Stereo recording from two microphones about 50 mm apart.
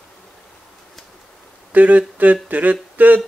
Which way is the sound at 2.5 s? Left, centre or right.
Right.